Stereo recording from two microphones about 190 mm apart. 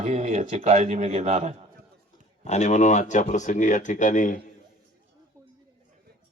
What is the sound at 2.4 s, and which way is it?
Speech, 40° left (ahead or behind).